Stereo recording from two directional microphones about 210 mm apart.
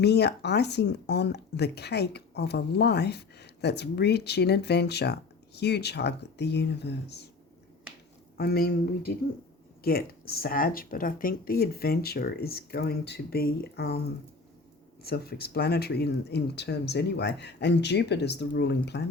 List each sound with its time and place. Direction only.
0.0 s speech: 50° left (ahead or behind)
8.4 s speech: 45° left (ahead or behind)
15.0 s speech: 50° left (ahead or behind)